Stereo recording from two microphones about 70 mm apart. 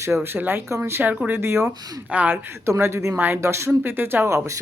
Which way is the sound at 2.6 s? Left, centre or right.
Right.